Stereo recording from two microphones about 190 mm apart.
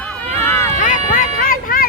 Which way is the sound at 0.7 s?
45° left (ahead or behind).